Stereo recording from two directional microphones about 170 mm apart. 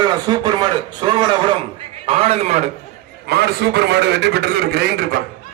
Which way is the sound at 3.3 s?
70° right (ahead or behind).